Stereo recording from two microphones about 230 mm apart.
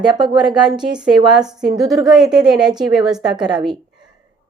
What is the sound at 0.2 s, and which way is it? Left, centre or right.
Speech, centre.